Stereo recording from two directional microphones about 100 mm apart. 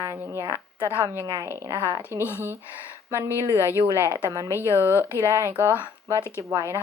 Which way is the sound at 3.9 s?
30° right (ahead or behind).